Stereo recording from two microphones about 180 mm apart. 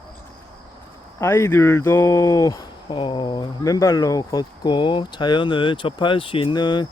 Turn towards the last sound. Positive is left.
turn(degrees=25)  # may be behind; listen again after turning